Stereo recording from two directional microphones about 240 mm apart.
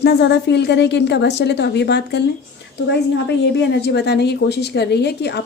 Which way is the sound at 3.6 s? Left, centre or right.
Left.